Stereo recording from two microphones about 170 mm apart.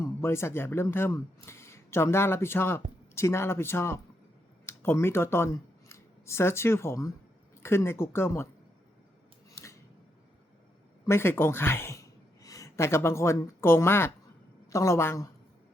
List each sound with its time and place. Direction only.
0.0 s speech: 15° left (ahead or behind)
9.5 s a sound: 15° left (ahead or behind)
11.0 s speech: 15° left (ahead or behind)